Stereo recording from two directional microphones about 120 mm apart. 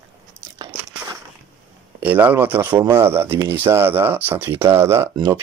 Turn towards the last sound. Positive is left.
turn(degrees=-20)  # may be behind; listen again after turning